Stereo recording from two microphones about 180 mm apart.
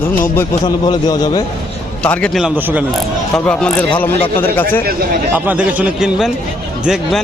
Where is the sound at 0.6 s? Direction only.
25° left (ahead or behind).